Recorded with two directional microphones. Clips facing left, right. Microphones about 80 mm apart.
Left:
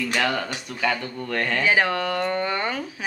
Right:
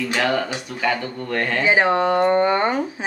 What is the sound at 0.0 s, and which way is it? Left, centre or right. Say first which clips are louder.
Speech: right 3 dB; centre.